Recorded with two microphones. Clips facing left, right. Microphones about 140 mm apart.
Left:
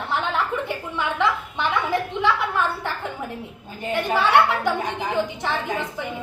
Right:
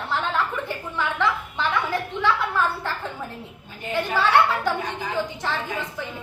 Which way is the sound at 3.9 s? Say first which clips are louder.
Left 1 dB; 15° left (ahead or behind).